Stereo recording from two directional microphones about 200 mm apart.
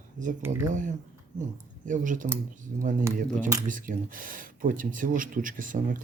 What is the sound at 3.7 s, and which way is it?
Speech, 40° right (ahead or behind).